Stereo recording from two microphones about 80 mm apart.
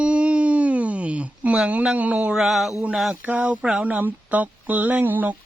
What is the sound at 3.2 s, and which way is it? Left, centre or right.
Speech, centre.